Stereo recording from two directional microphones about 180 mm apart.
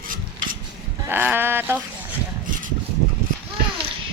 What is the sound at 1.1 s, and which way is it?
Speech, 10° right (ahead or behind).